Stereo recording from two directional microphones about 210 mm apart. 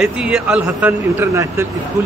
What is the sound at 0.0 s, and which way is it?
Speech, 5° right (ahead or behind).